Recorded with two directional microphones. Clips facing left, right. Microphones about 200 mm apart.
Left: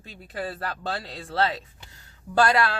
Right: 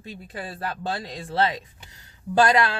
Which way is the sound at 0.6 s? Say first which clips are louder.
Right 2 dB; 15° right (ahead or behind).